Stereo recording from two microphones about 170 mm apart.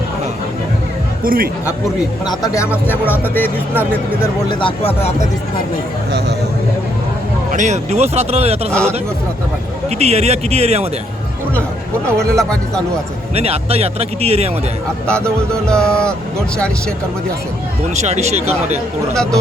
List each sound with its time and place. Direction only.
1.2 s speech: 55° right (ahead or behind)
2.2 s speech: 20° left (ahead or behind)
4.2 s speech: 30° left (ahead or behind)
6.1 s speech: 75° right (ahead or behind)
7.5 s speech: 45° right (ahead or behind)
8.7 s speech: 5° left (ahead or behind)
9.9 s speech: 40° right (ahead or behind)
12.0 s speech: 5° left (ahead or behind)
13.3 s speech: 35° right (ahead or behind)
15.0 s speech: 5° left (ahead or behind)
17.9 s speech: 40° right (ahead or behind)